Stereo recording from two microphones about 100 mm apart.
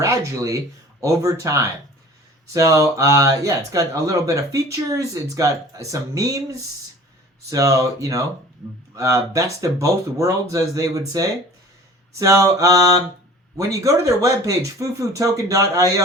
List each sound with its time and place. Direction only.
0.0 s speech: 30° right (ahead or behind)
7.5 s speech: 35° right (ahead or behind)